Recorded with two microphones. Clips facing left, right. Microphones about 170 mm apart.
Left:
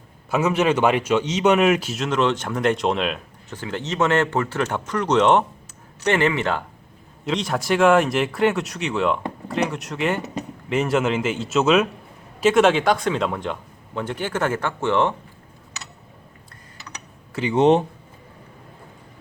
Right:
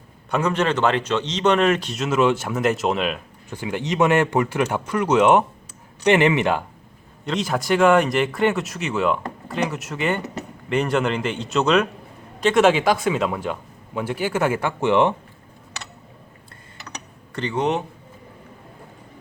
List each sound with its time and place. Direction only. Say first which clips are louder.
0.3 s a man's voice: left 2 dB; 5° left (ahead or behind); by 6.6 s 15° right (ahead or behind)
7.3 s a man's voice: right 1 dB; centre (ahead or behind); by 15.1 s 15° right (ahead or behind)
17.5 s speech: left 7 dB; 30° left (ahead or behind)